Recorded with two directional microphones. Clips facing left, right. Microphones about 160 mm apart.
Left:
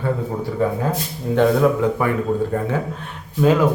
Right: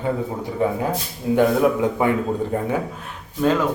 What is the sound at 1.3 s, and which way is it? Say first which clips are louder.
A man's voice: left 1 dB; 15° right (ahead or behind).